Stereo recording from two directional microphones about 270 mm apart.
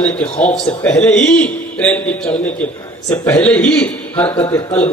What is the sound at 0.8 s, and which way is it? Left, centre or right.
A man's voice, centre.